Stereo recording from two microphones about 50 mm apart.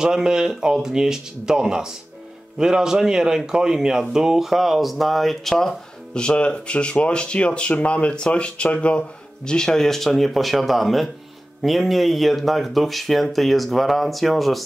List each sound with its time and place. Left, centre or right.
0.0 s speech: centre
6.1 s speech: left; by 14.6 s centre